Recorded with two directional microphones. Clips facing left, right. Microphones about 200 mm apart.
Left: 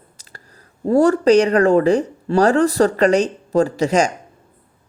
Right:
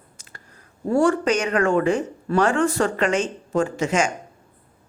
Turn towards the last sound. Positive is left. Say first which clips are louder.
# left 5 dB
turn(degrees=35)  # may be behind; listen again after turning